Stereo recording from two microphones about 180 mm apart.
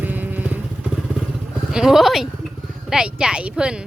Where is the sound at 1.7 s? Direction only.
Centre (ahead or behind).